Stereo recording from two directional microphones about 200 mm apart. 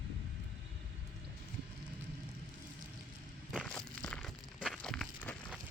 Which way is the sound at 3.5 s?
5° left (ahead or behind).